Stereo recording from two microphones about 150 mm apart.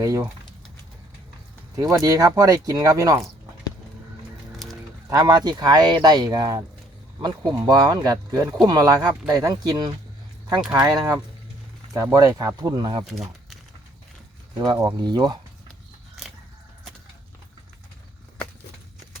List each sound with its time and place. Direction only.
0.0 s speech: 20° right (ahead or behind)
1.7 s speech: 20° right (ahead or behind)
4.6 s livestock: centre (ahead or behind)
5.0 s speech: 25° right (ahead or behind)
13.1 s speech: centre (ahead or behind)
14.6 s speech: 25° right (ahead or behind)